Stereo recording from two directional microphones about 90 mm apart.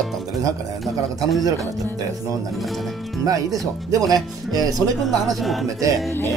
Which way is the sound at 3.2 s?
40° right (ahead or behind).